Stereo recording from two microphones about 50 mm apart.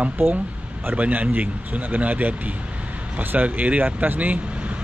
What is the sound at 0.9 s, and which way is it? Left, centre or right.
Speech, right.